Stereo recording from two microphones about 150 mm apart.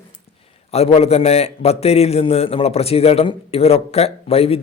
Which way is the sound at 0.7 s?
45° left (ahead or behind).